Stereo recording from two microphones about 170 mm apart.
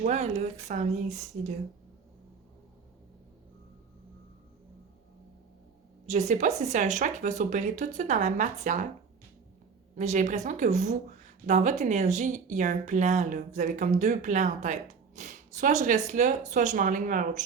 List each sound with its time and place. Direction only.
0.0 s speech: 40° right (ahead or behind)
6.1 s speech: 45° right (ahead or behind)
9.9 s speech: 45° right (ahead or behind)